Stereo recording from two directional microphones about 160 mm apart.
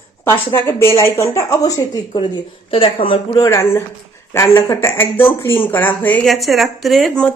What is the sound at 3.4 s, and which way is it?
A woman's voice, 20° left (ahead or behind).